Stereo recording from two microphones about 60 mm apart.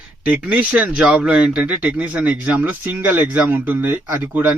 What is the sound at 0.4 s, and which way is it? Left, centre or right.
Speech, right.